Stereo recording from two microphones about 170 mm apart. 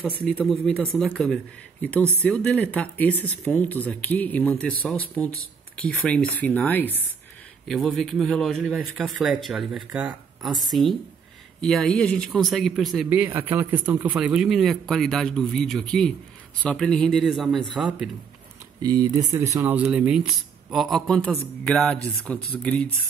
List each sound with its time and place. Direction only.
0.2 s speech: 5° left (ahead or behind)
5.9 s speech: 5° left (ahead or behind)
13.1 s speech: 10° right (ahead or behind)
18.8 s speech: 25° right (ahead or behind)
19.5 s speech: 10° right (ahead or behind); by 22.8 s 5° left (ahead or behind)